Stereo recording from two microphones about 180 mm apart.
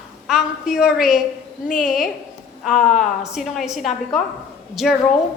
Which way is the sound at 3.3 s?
Centre (ahead or behind).